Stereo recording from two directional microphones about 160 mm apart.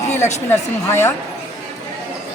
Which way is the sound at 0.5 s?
15° left (ahead or behind).